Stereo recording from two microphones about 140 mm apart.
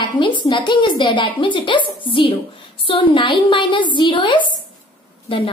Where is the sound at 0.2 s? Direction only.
35° left (ahead or behind).